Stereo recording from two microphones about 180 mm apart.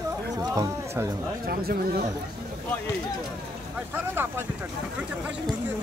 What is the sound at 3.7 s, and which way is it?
Speech, 10° right (ahead or behind).